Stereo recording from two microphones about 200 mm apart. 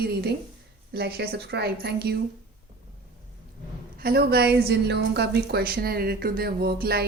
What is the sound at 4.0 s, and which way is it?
A woman's voice, 50° right (ahead or behind).